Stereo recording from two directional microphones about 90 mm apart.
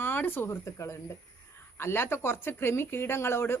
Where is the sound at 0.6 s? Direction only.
35° left (ahead or behind).